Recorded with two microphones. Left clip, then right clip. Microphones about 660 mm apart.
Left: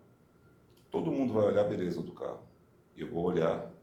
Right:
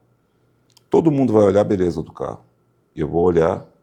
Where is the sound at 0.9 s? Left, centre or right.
Right.